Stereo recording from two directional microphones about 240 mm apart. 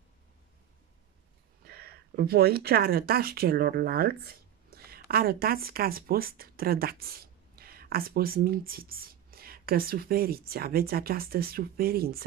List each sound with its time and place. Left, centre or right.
1.6 s speech: right